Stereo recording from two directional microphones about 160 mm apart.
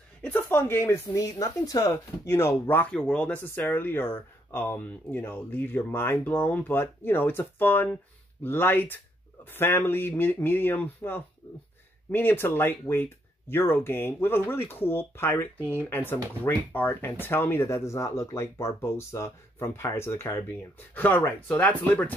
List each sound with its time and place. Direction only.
0.2 s speech: 10° left (ahead or behind)